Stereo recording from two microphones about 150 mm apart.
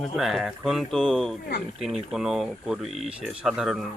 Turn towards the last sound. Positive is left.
turn(degrees=0)  # may be behind; listen again after turning